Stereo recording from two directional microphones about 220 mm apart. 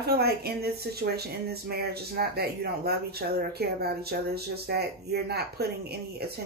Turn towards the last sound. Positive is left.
turn(degrees=-45)  # may be behind; listen again after turning